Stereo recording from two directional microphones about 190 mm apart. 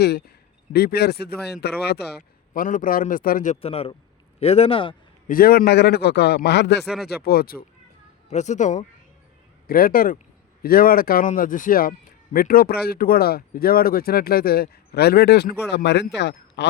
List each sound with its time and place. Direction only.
0.0 s a man's voice: 60° left (ahead or behind)
2.5 s a man's voice: 45° left (ahead or behind); by 4.9 s 30° left (ahead or behind)
5.3 s a man's voice: 50° left (ahead or behind)
6.8 s speech: 5° right (ahead or behind)
7.1 s speech: 55° left (ahead or behind)
8.3 s a man's voice: 40° left (ahead or behind)
9.6 s speech: 50° left (ahead or behind)